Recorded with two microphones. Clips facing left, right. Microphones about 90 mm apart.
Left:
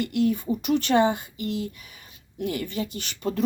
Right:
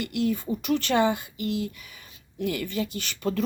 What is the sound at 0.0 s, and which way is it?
Speech, 40° left (ahead or behind).